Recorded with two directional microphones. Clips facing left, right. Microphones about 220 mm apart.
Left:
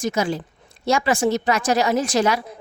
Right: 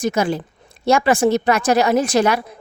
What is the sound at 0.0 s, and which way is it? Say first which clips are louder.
A woman's voice: right 3 dB; 60° right (ahead or behind).